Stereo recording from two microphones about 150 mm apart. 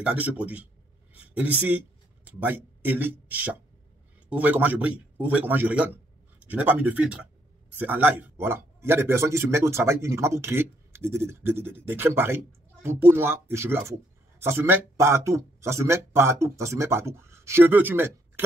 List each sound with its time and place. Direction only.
0.0 s a man's voice: 10° right (ahead or behind)